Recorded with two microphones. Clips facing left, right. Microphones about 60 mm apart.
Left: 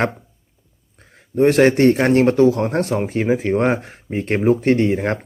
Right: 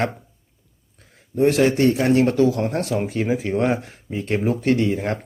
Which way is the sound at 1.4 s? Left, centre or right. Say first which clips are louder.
Left 4 dB; left.